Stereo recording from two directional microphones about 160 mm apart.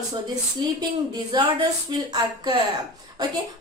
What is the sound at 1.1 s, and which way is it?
Speech, 25° right (ahead or behind).